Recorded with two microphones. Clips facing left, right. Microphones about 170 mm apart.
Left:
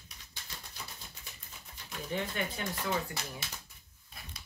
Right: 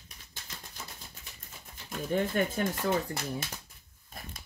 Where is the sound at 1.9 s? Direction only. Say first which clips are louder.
Right 7 dB; 45° right (ahead or behind).